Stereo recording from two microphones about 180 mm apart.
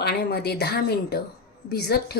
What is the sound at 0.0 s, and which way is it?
Speech, 65° left (ahead or behind).